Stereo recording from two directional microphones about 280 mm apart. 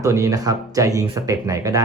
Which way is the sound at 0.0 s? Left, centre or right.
Centre.